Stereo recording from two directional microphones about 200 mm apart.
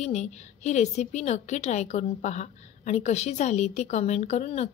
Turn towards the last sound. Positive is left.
turn(degrees=35)  # may be behind; listen again after turning